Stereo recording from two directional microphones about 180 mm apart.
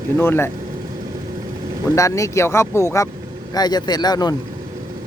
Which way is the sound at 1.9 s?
15° left (ahead or behind).